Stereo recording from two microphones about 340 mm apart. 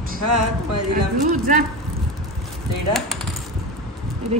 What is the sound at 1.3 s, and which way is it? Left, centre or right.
Speech, right.